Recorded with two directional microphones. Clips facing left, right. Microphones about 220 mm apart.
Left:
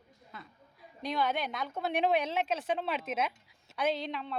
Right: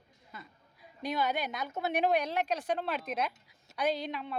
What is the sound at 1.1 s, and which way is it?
Speech, 5° right (ahead or behind).